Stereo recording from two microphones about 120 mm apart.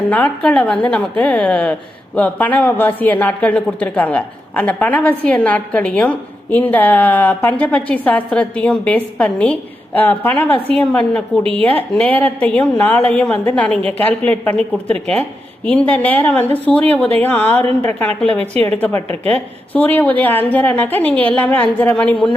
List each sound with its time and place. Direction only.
0.1 s speech: 10° left (ahead or behind)